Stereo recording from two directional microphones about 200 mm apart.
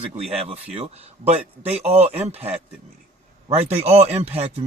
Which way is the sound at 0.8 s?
30° right (ahead or behind).